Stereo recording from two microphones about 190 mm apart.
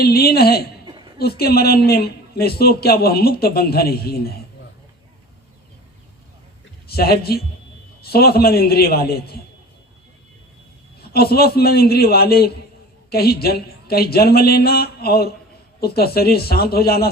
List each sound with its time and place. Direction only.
0.0 s a man's voice: 55° left (ahead or behind)
0.9 s a sound: 25° right (ahead or behind)
1.2 s a man's voice: 55° left (ahead or behind)
6.8 s a man's voice: 55° left (ahead or behind)
11.0 s a man's voice: 55° left (ahead or behind)